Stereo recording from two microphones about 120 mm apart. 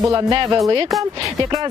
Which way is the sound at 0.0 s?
30° right (ahead or behind).